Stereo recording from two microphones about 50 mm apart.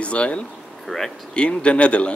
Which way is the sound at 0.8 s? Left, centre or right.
Centre.